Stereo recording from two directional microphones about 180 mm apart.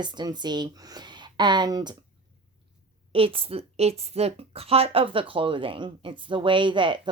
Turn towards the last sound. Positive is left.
turn(degrees=-25)  # may be behind; listen again after turning